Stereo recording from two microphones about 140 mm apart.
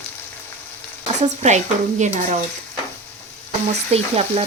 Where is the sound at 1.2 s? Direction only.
55° right (ahead or behind).